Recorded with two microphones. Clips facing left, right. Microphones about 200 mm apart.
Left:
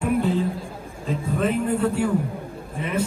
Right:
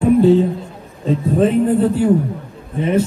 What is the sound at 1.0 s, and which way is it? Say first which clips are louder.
A man's voice: right 9 dB; 30° right (ahead or behind).